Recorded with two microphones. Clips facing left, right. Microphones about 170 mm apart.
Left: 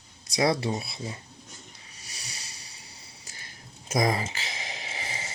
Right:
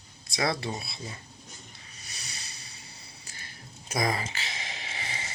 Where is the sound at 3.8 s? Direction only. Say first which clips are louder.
Left 4 dB; 25° left (ahead or behind).